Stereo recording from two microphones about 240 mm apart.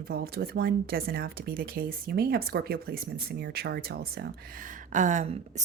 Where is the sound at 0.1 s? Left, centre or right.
Right.